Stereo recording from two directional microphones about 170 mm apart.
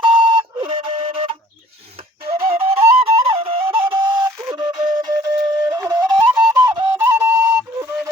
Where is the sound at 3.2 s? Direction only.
35° right (ahead or behind); by 7.5 s 15° right (ahead or behind).